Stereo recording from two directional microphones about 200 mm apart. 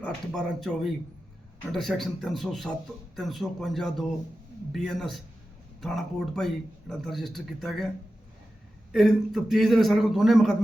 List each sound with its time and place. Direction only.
0.0 s a man's voice: 5° left (ahead or behind)
8.9 s a man's voice: centre (ahead or behind)